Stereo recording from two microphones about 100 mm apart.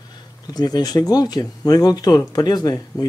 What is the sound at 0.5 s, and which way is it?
Speech, 45° left (ahead or behind).